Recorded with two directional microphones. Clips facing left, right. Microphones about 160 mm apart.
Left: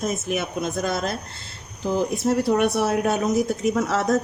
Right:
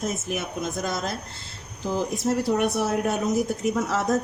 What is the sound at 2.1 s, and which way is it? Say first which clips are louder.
Speech: left 2 dB; 65° left (ahead or behind).